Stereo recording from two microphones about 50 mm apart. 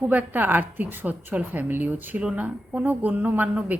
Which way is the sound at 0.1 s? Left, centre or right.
Right.